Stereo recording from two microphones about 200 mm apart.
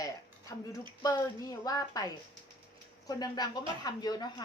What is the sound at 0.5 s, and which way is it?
A woman's voice, 15° left (ahead or behind).